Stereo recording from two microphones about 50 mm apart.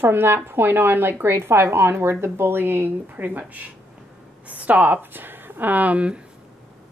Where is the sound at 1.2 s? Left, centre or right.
Right.